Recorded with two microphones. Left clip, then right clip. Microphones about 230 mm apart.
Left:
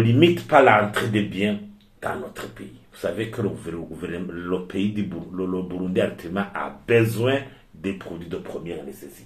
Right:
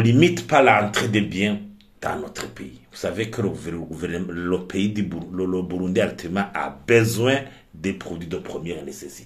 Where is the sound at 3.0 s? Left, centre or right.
Right.